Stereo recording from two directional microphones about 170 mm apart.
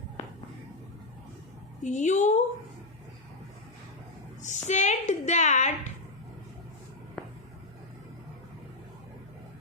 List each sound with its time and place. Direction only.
1.8 s a woman's voice: 45° left (ahead or behind)
4.4 s a woman's voice: 45° left (ahead or behind)